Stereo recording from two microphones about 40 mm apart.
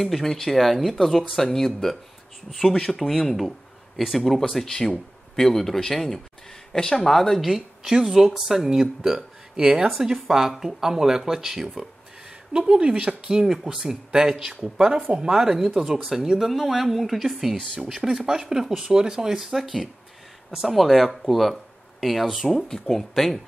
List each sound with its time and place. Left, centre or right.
0.0 s a woman's voice: centre
12.5 s a woman's voice: right
19.5 s a woman's voice: centre